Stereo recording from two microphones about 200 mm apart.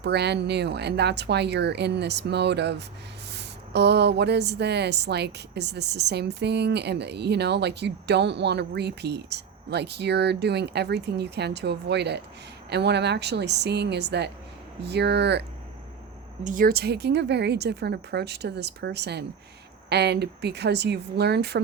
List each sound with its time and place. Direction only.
0.0 s a woman's voice: 55° right (ahead or behind)
16.4 s a woman's voice: 40° right (ahead or behind)